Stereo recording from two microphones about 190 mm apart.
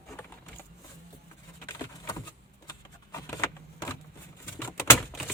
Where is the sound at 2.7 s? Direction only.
15° left (ahead or behind).